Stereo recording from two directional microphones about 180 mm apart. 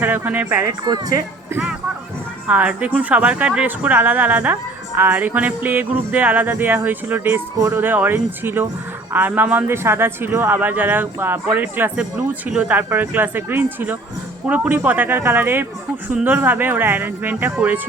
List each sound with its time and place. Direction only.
0.0 s a man's voice: 10° right (ahead or behind)
0.9 s speech: 25° right (ahead or behind)
2.5 s a man's voice: 5° right (ahead or behind)